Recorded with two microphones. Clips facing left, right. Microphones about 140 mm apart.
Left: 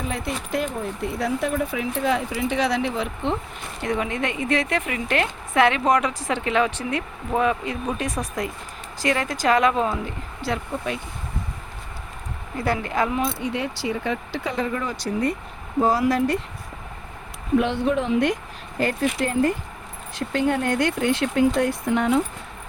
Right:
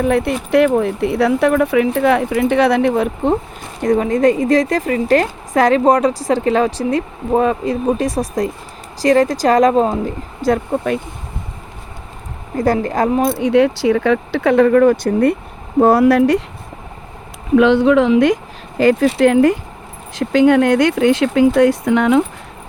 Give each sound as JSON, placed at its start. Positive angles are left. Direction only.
{"t": 0.0, "sound": "speech", "side_deg": -60}
{"t": 3.8, "sound": "speech", "side_deg": -40}
{"t": 10.4, "sound": "speech", "side_deg": -50}
{"t": 12.5, "sound": "speech", "side_deg": -40}
{"t": 13.4, "sound": "speech", "side_deg": -85}
{"t": 17.6, "sound": "speech", "side_deg": -90}
{"t": 19.2, "sound": "speech", "side_deg": -80}
{"t": 20.1, "sound": "speech", "side_deg": -90}